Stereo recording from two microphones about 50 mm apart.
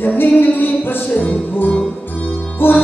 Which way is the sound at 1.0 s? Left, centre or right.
Left.